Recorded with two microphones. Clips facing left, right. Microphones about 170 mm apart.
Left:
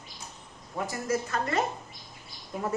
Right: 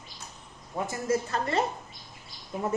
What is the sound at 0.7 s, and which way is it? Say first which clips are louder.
Speech: right 2 dB; 25° right (ahead or behind).